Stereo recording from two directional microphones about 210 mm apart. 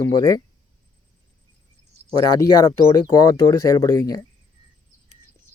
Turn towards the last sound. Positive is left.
turn(degrees=15)  # may be behind; listen again after turning